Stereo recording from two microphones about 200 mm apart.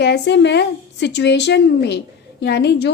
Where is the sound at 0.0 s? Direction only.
60° left (ahead or behind).